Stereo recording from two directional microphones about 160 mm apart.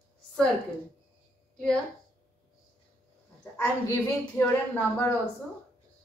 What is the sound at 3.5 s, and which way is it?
A woman's voice, 15° left (ahead or behind).